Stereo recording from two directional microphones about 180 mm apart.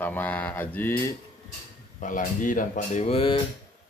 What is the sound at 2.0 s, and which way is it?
Speech, 45° left (ahead or behind).